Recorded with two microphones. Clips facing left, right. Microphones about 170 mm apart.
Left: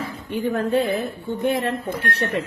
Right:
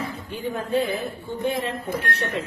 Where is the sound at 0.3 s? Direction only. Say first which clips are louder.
Left 7 dB; 65° left (ahead or behind).